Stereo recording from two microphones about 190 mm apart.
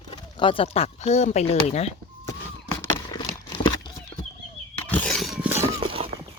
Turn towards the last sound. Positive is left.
turn(degrees=-30)  # may be behind; listen again after turning